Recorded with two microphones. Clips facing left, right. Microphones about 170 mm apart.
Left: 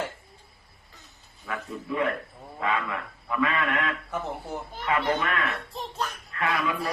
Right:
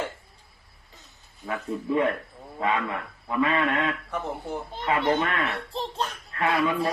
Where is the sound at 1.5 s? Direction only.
25° right (ahead or behind).